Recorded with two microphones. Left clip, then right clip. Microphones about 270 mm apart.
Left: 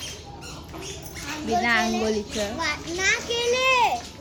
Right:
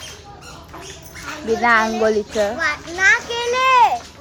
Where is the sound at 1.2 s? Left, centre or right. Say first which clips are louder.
Right 6 dB; centre.